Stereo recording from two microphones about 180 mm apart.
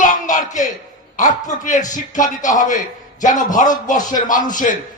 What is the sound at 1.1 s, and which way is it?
A woman's voice, 45° left (ahead or behind).